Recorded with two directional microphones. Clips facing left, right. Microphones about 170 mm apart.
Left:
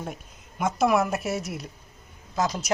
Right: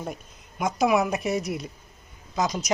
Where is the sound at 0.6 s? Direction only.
Centre (ahead or behind).